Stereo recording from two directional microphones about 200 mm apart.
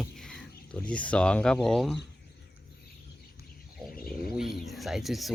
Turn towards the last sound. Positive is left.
turn(degrees=0)  # may be behind; listen again after turning